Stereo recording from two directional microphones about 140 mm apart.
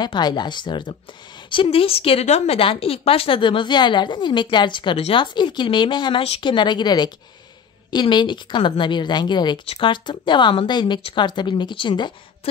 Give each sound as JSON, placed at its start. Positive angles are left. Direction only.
{"t": 0.0, "sound": "speech", "side_deg": 30}